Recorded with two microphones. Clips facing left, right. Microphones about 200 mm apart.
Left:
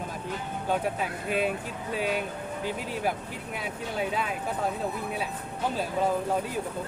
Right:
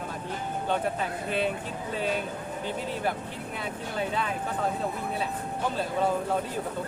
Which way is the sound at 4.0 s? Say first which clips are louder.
Even; 10° left (ahead or behind).